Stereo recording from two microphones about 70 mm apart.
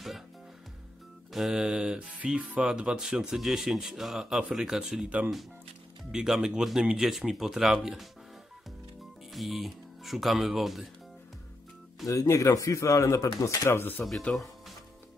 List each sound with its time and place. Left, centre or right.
1.3 s speech: centre
9.3 s speech: centre
12.1 s speech: left
13.7 s speech: left
14.3 s speech: left